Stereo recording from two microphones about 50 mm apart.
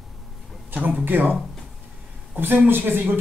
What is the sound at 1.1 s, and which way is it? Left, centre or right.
Speech, right.